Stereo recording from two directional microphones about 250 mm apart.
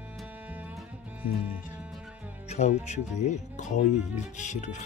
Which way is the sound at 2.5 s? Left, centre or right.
Left.